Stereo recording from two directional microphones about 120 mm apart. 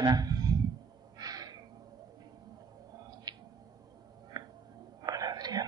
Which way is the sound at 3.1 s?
35° right (ahead or behind).